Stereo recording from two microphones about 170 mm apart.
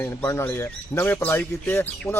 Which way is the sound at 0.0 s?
15° left (ahead or behind).